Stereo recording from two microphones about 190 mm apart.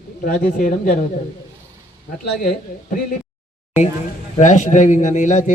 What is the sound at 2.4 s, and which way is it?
Speech, 50° left (ahead or behind).